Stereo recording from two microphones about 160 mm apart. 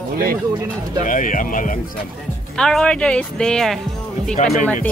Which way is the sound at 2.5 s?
5° left (ahead or behind).